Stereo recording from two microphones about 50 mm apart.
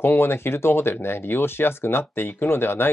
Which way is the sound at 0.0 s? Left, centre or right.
Left.